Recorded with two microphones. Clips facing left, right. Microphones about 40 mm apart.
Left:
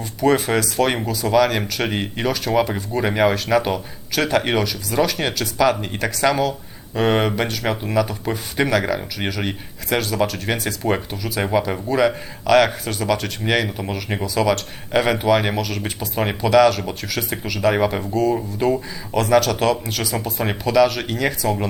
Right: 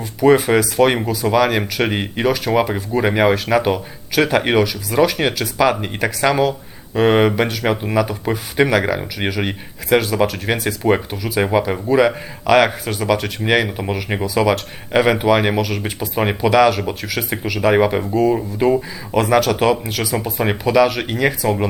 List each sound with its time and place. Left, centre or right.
0.0 s speech: centre